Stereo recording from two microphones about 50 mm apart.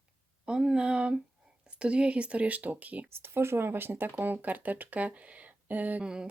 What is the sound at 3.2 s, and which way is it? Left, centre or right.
Speech, right.